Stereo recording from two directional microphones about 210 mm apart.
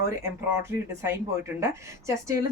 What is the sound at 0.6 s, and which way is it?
Speech, 10° right (ahead or behind).